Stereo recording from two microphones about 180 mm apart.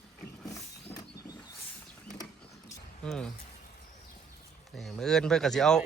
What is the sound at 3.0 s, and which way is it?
Speech, 5° left (ahead or behind).